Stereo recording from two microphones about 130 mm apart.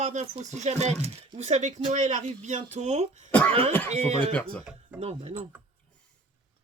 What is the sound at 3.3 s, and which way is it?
Speech, 10° left (ahead or behind).